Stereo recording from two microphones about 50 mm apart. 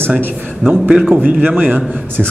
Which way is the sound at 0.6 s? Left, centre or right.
Right.